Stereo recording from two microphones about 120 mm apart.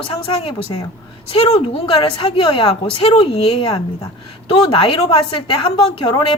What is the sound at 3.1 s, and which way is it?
Speech, 55° left (ahead or behind).